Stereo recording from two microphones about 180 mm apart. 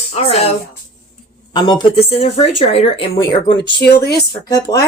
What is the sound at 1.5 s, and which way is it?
Speech, 20° left (ahead or behind).